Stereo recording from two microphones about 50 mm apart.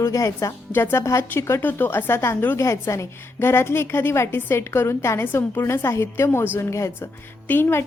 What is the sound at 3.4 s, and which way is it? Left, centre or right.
A woman's voice, left.